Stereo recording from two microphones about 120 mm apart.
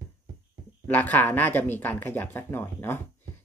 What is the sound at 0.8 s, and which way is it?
Speech, 15° left (ahead or behind).